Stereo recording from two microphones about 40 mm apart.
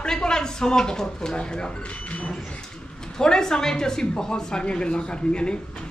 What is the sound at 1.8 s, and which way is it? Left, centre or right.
Speech, left.